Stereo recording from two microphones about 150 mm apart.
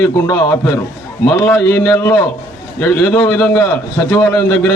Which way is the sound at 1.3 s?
15° left (ahead or behind).